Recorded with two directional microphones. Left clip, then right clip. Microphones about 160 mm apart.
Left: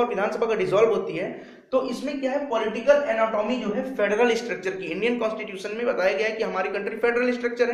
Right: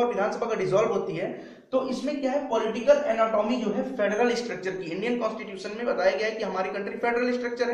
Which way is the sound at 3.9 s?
20° left (ahead or behind).